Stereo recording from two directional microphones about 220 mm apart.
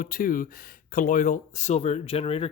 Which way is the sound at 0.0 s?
40° left (ahead or behind).